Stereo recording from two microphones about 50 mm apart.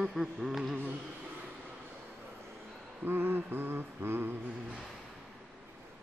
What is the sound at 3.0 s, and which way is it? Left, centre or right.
Mantra, right.